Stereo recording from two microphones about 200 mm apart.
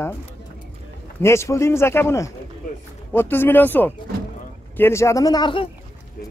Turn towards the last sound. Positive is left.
turn(degrees=25)  # may be behind; listen again after turning